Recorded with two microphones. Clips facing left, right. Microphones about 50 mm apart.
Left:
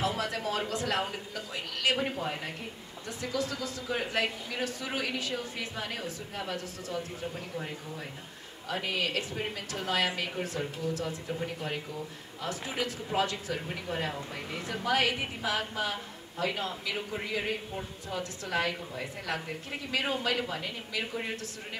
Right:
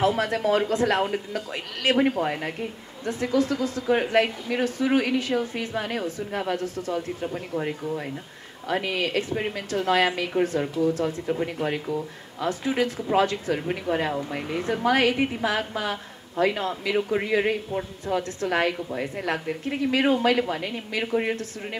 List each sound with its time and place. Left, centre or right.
0.0 s a woman's voice: right
10.4 s speech: right
11.4 s speech: right
12.4 s a woman's voice: right